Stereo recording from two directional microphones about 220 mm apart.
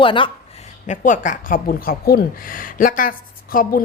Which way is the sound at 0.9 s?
35° left (ahead or behind).